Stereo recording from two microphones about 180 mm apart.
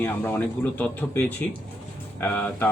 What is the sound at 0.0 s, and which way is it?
A man's voice, 10° left (ahead or behind).